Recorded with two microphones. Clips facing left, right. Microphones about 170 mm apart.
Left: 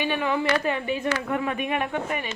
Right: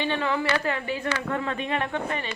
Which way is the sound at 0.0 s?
15° left (ahead or behind).